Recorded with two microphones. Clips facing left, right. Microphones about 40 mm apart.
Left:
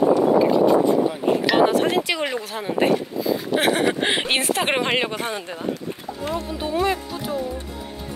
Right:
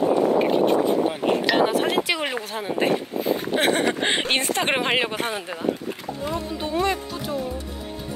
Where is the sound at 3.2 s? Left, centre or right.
Right.